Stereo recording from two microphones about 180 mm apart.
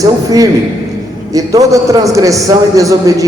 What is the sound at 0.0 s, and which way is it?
A man's voice, 20° right (ahead or behind).